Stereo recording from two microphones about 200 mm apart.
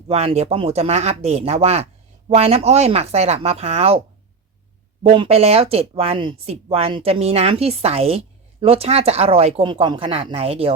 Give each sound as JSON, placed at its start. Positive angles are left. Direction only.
{"t": 0.1, "sound": "a woman's voice", "side_deg": -30}
{"t": 5.0, "sound": "a woman's voice", "side_deg": -25}